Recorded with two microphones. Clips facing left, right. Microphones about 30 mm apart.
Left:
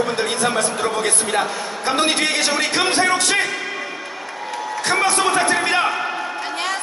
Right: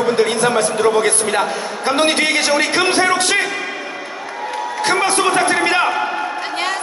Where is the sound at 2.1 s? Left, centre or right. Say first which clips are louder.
Right 3 dB; right.